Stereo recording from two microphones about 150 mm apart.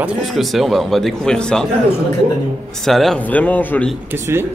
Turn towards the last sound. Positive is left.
turn(degrees=-15)  # may be behind; listen again after turning